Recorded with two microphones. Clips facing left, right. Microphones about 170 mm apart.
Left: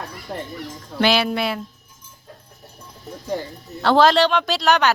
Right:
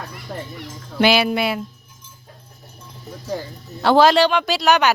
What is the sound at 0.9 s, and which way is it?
Speech, 10° right (ahead or behind).